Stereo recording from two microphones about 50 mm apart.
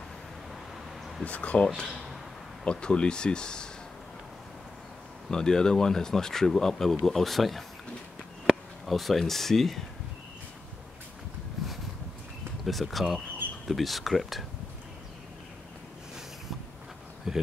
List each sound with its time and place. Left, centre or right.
1.2 s speech: left
5.3 s speech: centre
12.6 s speech: centre
17.3 s speech: centre